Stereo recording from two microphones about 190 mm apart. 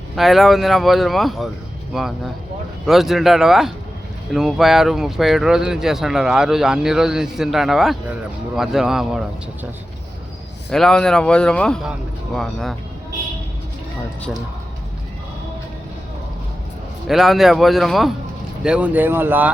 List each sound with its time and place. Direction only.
0.2 s speech: centre (ahead or behind)
10.7 s speech: 5° left (ahead or behind)
17.1 s speech: centre (ahead or behind)